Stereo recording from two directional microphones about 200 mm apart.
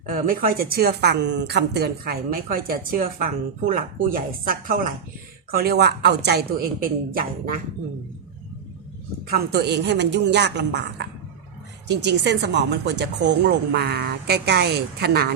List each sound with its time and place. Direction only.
0.1 s a woman's voice: 45° right (ahead or behind)
9.2 s speech: 50° right (ahead or behind)